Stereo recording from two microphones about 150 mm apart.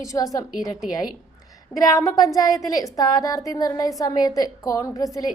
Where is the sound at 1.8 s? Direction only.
25° left (ahead or behind).